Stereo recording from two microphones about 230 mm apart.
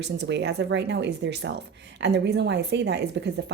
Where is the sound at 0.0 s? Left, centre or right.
Right.